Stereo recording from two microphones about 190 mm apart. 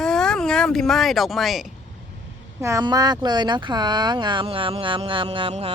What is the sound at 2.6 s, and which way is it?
Speech, 15° right (ahead or behind).